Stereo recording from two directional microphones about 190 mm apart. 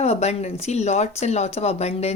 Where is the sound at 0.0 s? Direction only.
35° left (ahead or behind).